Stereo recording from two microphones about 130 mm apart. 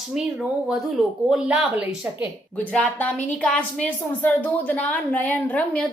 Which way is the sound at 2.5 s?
10° left (ahead or behind).